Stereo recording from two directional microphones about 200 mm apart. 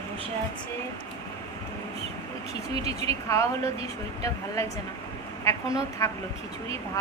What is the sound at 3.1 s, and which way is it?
Speech, 15° left (ahead or behind).